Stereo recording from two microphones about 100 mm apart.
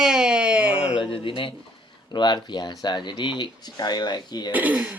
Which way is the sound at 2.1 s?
50° left (ahead or behind).